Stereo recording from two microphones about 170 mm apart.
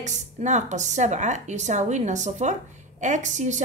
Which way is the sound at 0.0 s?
45° right (ahead or behind).